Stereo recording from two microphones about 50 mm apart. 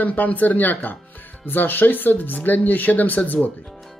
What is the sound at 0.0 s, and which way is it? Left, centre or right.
Speech, left.